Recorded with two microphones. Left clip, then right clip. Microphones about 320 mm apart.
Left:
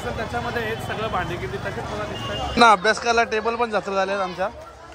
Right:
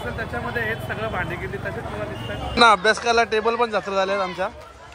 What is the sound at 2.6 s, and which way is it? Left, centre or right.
Speech, centre.